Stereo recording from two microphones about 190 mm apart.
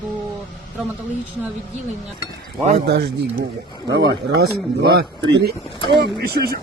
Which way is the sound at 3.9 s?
65° right (ahead or behind).